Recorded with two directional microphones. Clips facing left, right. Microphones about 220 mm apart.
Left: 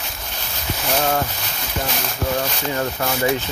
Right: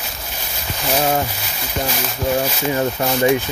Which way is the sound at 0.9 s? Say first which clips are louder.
Right 2 dB; 10° right (ahead or behind).